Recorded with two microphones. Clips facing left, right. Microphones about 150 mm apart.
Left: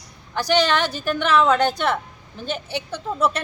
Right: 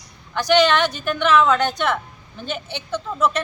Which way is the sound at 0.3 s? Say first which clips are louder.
Right 3 dB; 35° left (ahead or behind).